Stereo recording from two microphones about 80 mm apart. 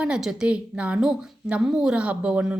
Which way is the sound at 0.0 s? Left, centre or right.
Centre.